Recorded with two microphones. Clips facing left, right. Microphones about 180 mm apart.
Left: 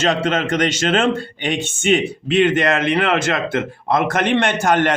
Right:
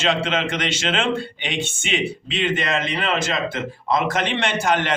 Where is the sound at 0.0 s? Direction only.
40° left (ahead or behind).